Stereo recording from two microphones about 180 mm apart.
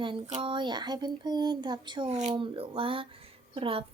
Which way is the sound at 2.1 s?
40° right (ahead or behind).